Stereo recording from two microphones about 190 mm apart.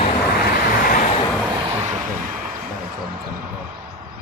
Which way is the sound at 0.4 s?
45° left (ahead or behind).